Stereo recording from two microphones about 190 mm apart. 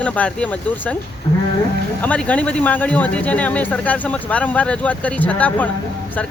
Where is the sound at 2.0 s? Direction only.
5° left (ahead or behind).